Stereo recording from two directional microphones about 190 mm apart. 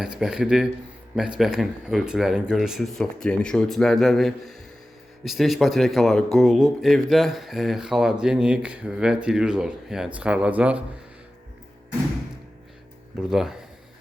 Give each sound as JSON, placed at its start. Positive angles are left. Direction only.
{"t": 0.0, "sound": "speech", "side_deg": -5}
{"t": 13.3, "sound": "speech", "side_deg": 0}